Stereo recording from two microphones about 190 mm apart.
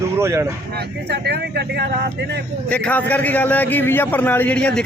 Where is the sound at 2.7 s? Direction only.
5° left (ahead or behind).